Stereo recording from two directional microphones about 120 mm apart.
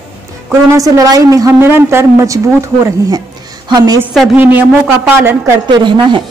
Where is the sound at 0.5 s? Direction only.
25° right (ahead or behind).